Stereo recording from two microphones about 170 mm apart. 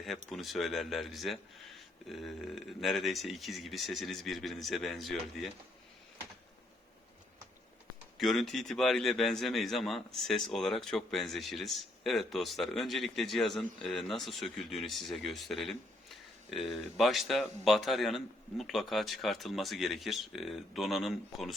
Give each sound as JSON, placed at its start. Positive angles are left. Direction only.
{"t": 0.3, "sound": "a man's voice", "side_deg": 0}
{"t": 8.2, "sound": "a man's voice", "side_deg": 0}